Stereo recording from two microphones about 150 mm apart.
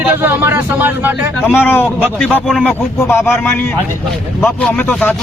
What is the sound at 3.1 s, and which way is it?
Speech, 15° left (ahead or behind).